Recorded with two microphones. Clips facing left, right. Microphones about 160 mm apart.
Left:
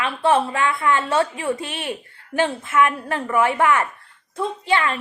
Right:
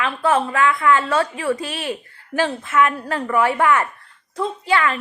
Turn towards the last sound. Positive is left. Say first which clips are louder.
# right 1 dB
turn(degrees=30)  # may be behind; listen again after turning